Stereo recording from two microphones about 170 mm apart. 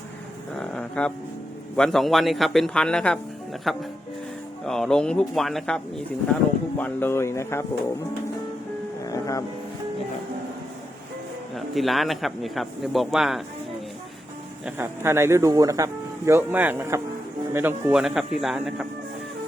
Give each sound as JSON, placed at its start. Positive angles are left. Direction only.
{"t": 0.6, "sound": "a man's voice", "side_deg": 5}
{"t": 9.0, "sound": "speech", "side_deg": 20}
{"t": 11.5, "sound": "a man's voice", "side_deg": 0}
{"t": 14.6, "sound": "a man's voice", "side_deg": -15}